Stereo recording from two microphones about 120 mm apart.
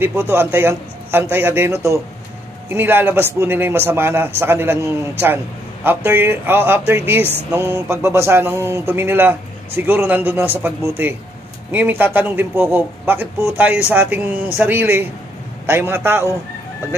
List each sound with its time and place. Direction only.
0.0 s a man's voice: 15° right (ahead or behind)
5.9 s a man's voice: 20° right (ahead or behind)